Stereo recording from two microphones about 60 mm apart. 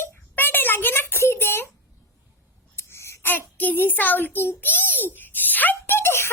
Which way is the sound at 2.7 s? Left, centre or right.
Left.